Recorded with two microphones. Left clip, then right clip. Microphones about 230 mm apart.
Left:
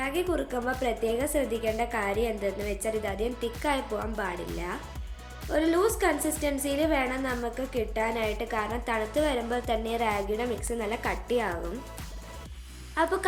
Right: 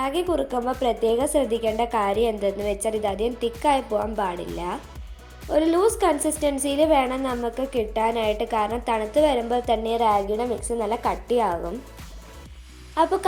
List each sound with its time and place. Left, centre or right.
0.0 s a woman's voice: right
12.9 s speech: centre